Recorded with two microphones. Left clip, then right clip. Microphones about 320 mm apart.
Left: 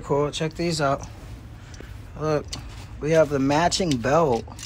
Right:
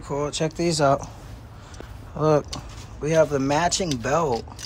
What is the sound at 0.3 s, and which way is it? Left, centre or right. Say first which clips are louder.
Speech: right 2 dB; centre.